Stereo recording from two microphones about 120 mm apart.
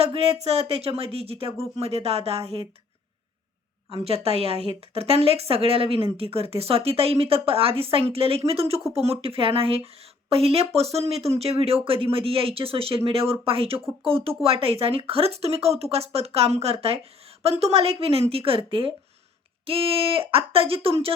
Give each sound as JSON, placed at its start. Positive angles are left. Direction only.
{"t": 0.0, "sound": "speech", "side_deg": -55}
{"t": 3.8, "sound": "speech", "side_deg": -50}